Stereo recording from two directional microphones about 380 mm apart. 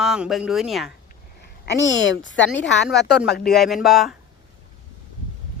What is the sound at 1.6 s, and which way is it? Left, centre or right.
Speech, left.